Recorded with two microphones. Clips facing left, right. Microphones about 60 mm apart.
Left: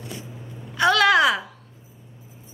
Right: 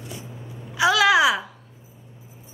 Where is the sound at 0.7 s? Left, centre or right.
Centre.